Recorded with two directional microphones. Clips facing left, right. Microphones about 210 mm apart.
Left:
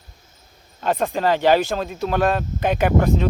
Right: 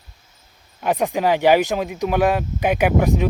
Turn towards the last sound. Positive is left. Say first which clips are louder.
# right 1 dB
turn(degrees=-10)  # may be behind; listen again after turning